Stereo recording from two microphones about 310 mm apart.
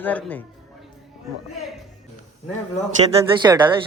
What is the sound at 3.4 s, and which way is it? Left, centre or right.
Speech, centre.